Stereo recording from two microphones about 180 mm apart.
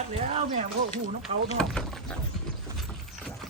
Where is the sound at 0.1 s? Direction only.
35° right (ahead or behind).